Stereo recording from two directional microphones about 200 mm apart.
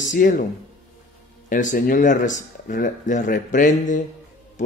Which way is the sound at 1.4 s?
40° left (ahead or behind).